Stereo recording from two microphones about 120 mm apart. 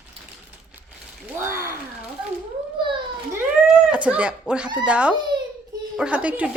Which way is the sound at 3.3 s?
10° right (ahead or behind).